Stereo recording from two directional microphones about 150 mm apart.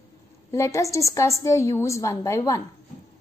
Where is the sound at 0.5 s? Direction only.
20° left (ahead or behind).